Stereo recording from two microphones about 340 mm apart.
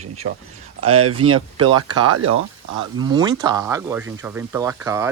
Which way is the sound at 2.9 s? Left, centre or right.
Centre.